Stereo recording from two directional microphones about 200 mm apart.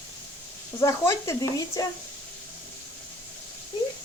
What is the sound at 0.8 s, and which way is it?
Speech, 15° left (ahead or behind).